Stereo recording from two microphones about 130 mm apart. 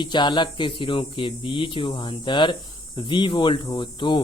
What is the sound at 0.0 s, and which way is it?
Speech, 35° left (ahead or behind).